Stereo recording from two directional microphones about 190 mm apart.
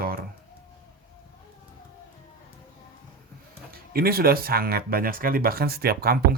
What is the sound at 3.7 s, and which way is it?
Speech, 50° right (ahead or behind).